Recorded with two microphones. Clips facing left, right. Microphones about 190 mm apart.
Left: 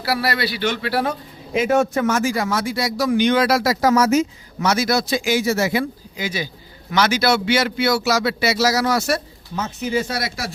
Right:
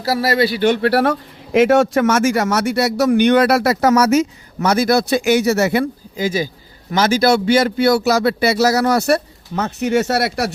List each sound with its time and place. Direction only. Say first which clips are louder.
0.0 s a man's voice: right 5 dB; 40° right (ahead or behind)
0.7 s a man's voice: right 7 dB; 65° right (ahead or behind)
4.6 s speech: right 4 dB; 55° right (ahead or behind)
6.1 s speech: right 7 dB; 45° right (ahead or behind)
7.6 s speech: right 5 dB; 55° right (ahead or behind)